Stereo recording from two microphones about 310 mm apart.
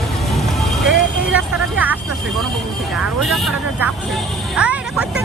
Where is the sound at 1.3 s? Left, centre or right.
Centre.